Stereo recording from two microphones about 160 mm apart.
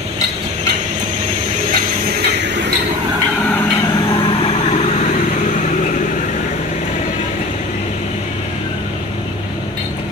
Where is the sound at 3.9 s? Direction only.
30° left (ahead or behind); by 6.3 s 55° left (ahead or behind).